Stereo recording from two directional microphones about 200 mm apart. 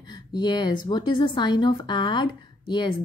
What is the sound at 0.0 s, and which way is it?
A woman's voice, 20° left (ahead or behind).